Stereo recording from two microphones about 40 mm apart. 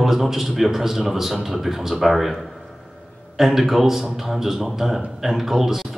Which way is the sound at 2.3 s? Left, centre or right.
Centre.